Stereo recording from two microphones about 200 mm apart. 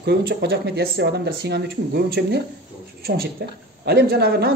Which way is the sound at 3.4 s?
50° right (ahead or behind).